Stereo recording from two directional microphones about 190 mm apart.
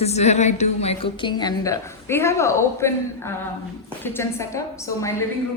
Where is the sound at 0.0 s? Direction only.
35° left (ahead or behind); by 5.1 s 15° left (ahead or behind).